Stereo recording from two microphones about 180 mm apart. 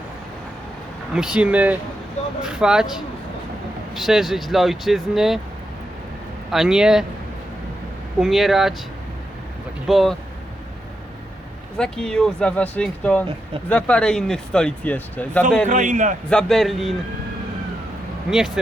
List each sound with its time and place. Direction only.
1.1 s speech: 5° right (ahead or behind)
6.5 s speech: 5° right (ahead or behind)
8.2 s speech: centre (ahead or behind)
9.8 s speech: centre (ahead or behind)
11.8 s speech: 5° left (ahead or behind)
15.7 s a man's voice: 45° right (ahead or behind)
16.3 s speech: centre (ahead or behind)
18.3 s speech: 5° right (ahead or behind)